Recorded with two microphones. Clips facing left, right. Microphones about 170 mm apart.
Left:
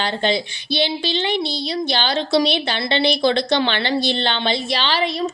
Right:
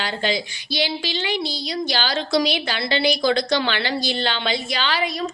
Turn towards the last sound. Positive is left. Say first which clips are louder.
# left 3 dB
turn(degrees=30)  # may be behind; listen again after turning